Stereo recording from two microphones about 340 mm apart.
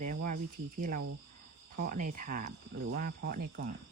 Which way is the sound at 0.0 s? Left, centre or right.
Right.